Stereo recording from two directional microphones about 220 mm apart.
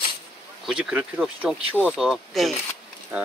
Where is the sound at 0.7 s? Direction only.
5° right (ahead or behind).